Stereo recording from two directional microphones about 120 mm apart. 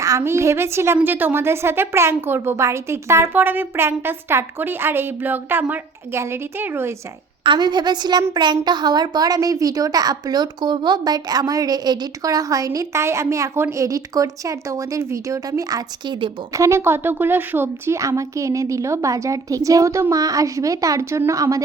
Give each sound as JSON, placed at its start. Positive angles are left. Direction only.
{"t": 0.0, "sound": "a woman's voice", "side_deg": -25}
{"t": 7.4, "sound": "a woman's voice", "side_deg": -40}
{"t": 16.5, "sound": "a woman's voice", "side_deg": -25}